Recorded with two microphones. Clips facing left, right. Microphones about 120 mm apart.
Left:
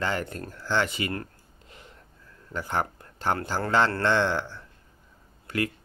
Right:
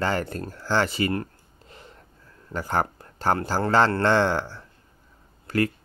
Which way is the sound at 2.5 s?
40° right (ahead or behind).